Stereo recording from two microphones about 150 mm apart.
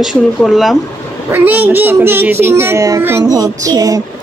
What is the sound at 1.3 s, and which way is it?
A child's voice, 10° right (ahead or behind).